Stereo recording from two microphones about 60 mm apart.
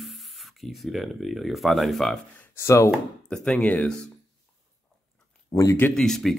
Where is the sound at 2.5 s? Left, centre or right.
Left.